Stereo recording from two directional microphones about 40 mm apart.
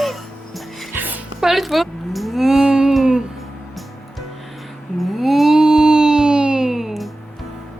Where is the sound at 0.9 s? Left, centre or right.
Right.